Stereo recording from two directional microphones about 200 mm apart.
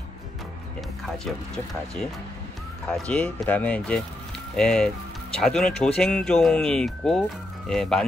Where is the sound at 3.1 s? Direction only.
5° left (ahead or behind).